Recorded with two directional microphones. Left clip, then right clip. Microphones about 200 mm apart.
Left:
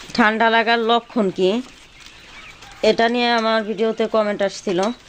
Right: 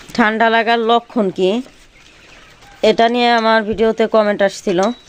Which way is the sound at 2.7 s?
20° right (ahead or behind).